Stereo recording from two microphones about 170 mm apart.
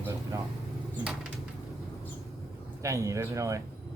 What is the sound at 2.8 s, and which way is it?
Speech, 20° right (ahead or behind).